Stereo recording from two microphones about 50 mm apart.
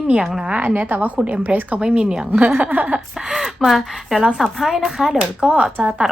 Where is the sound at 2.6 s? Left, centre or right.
Right.